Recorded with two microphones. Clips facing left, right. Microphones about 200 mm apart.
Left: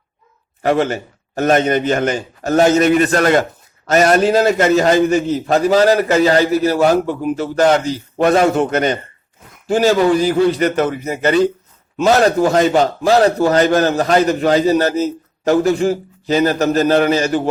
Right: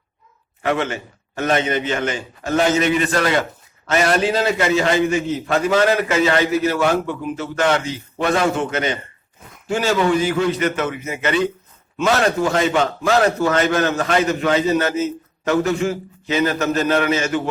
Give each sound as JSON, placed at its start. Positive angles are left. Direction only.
{"t": 0.6, "sound": "a man's voice", "side_deg": 35}